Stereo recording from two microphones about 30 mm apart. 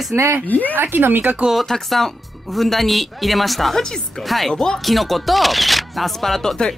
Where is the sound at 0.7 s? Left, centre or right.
Right.